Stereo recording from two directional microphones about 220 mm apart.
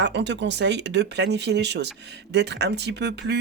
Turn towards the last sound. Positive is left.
turn(degrees=-50)  # may be behind; listen again after turning